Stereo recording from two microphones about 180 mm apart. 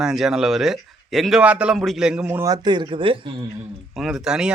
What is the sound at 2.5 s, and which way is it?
Speech, 25° right (ahead or behind).